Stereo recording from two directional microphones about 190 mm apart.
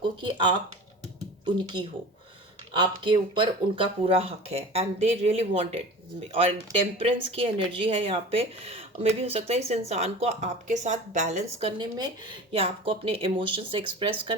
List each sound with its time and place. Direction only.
0.0 s a woman's voice: 25° right (ahead or behind)
11.6 s speech: 20° right (ahead or behind)